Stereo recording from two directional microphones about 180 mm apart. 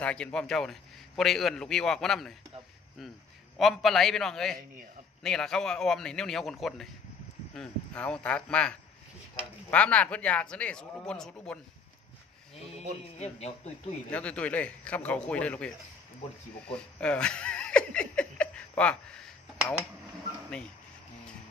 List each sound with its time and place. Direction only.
0.0 s a man's voice: 5° left (ahead or behind)
3.5 s a man's voice: centre (ahead or behind)
13.2 s speech: 35° left (ahead or behind)
14.1 s speech: 5° left (ahead or behind)
16.6 s a sound: 5° left (ahead or behind)